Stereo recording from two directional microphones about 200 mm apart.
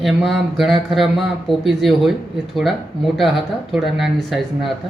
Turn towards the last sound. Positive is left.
turn(degrees=0)  # may be behind; listen again after turning